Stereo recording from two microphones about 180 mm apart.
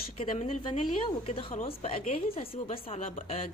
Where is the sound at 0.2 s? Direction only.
35° left (ahead or behind).